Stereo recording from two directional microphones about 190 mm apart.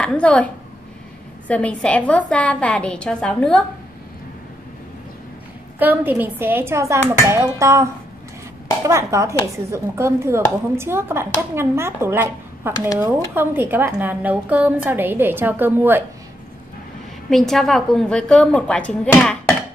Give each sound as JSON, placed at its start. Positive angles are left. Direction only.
{"t": 0.0, "sound": "a woman's voice", "side_deg": 5}
{"t": 1.5, "sound": "a woman's voice", "side_deg": 5}
{"t": 5.8, "sound": "a woman's voice", "side_deg": -10}
{"t": 17.3, "sound": "a woman's voice", "side_deg": 0}